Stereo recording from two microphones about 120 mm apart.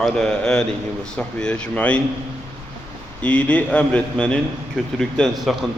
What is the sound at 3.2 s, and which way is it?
Speech, 10° left (ahead or behind).